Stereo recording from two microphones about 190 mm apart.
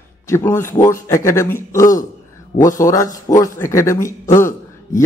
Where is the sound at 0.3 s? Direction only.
15° left (ahead or behind).